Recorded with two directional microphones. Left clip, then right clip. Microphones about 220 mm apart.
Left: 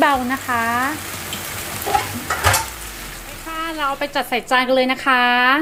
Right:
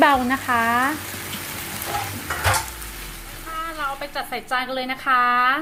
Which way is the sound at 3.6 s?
25° left (ahead or behind).